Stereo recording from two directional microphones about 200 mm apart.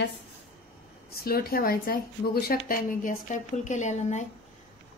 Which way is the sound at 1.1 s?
50° left (ahead or behind).